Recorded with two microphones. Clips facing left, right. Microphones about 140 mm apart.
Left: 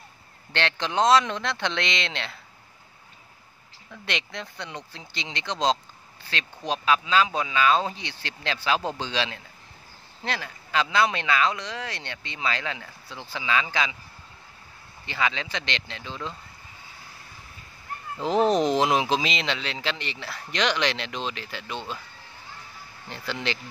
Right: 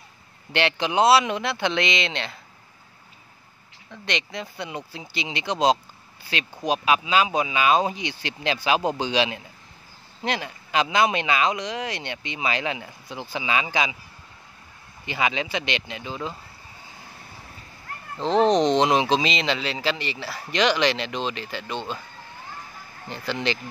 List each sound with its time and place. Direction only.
0.5 s speech: 10° right (ahead or behind)
3.9 s speech: 5° left (ahead or behind); by 13.9 s 15° right (ahead or behind)
15.0 s speech: 15° right (ahead or behind)
18.2 s speech: 5° left (ahead or behind)
23.0 s speech: centre (ahead or behind)